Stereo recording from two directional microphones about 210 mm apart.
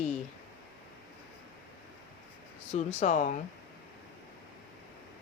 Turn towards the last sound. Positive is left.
turn(degrees=35)  # may be behind; listen again after turning